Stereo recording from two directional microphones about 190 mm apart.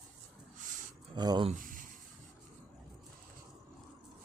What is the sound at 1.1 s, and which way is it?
Speech, 20° right (ahead or behind).